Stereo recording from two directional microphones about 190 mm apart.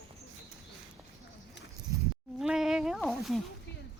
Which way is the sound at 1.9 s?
15° right (ahead or behind).